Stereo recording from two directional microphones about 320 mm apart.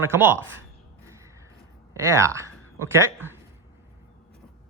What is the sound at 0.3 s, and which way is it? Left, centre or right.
Speech, right.